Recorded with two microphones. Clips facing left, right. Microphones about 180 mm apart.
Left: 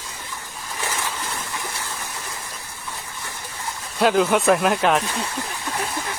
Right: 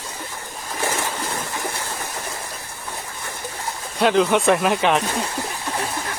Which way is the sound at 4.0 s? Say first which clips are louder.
Right 1 dB; centre (ahead or behind).